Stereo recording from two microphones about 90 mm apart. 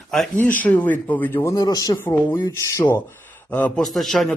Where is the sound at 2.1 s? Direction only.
30° left (ahead or behind).